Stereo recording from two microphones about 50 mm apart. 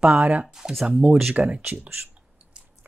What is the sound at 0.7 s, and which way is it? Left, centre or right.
Speech, centre.